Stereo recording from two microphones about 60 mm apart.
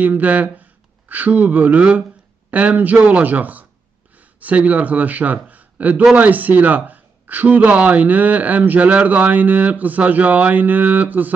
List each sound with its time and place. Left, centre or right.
0.0 s a man's voice: right